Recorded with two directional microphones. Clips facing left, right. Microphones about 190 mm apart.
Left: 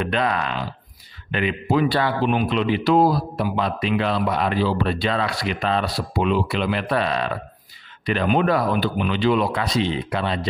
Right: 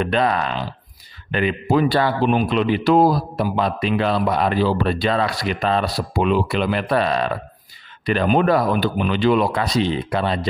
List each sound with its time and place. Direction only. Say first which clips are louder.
0.0 s a man's voice: right 3 dB; 35° right (ahead or behind)